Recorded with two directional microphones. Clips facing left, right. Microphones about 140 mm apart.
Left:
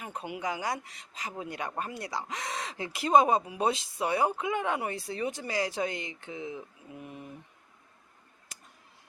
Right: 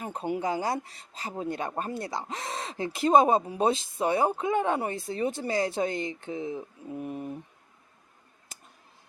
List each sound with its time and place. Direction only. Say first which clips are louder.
0.0 s speech: right 5 dB; 35° right (ahead or behind)